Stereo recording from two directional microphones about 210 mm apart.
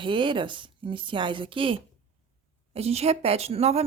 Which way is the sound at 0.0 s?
25° right (ahead or behind).